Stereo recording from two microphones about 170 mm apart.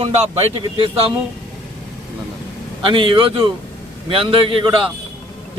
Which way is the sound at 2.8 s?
30° right (ahead or behind).